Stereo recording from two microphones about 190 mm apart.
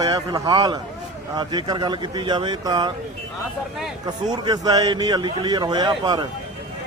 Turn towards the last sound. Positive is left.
turn(degrees=-20)  # may be behind; listen again after turning